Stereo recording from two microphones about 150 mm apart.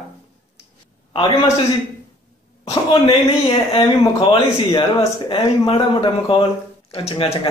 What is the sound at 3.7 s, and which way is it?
Speech, 35° left (ahead or behind).